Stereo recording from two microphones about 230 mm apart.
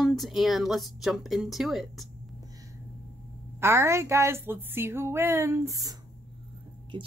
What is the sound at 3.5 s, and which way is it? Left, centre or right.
A woman's voice, centre.